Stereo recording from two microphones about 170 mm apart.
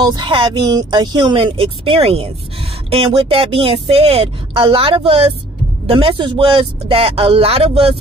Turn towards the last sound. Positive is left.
turn(degrees=-35)  # may be behind; listen again after turning